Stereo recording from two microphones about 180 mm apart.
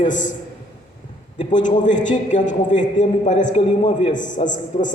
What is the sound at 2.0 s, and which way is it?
Speech, 45° left (ahead or behind).